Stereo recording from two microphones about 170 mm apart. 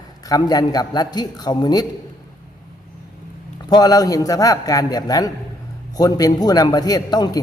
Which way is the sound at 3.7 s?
20° left (ahead or behind).